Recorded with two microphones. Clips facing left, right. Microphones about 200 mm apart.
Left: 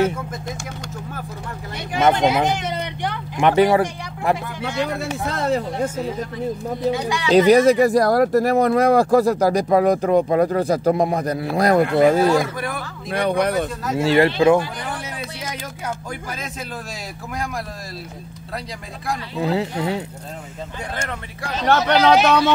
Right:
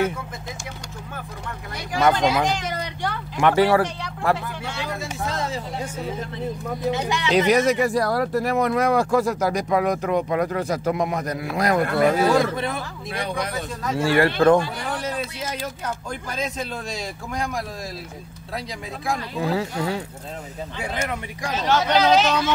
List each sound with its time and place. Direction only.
2.0 s speech: 25° left (ahead or behind)
4.8 s speech: 65° left (ahead or behind)
6.9 s speech: 20° right (ahead or behind)
7.2 s speech: 35° left (ahead or behind)
12.5 s speech: 25° right (ahead or behind)
13.1 s speech: 60° left (ahead or behind)
13.9 s speech: 20° left (ahead or behind)
14.4 s speech: 10° left (ahead or behind)
16.1 s speech: 5° left (ahead or behind)
19.4 s speech: 20° left (ahead or behind)
20.9 s speech: 10° right (ahead or behind)
21.6 s speech: 60° left (ahead or behind)